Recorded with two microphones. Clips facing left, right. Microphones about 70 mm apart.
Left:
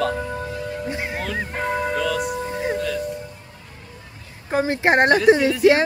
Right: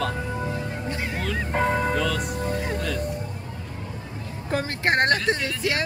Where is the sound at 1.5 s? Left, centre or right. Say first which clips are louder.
Right 2 dB; centre.